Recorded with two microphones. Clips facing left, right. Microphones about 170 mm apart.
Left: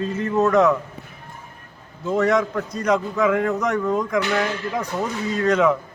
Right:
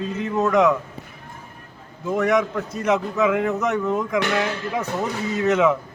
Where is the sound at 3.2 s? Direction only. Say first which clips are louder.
Even; 10° right (ahead or behind).